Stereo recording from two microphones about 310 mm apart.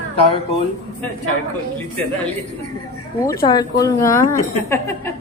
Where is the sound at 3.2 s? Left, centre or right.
Centre.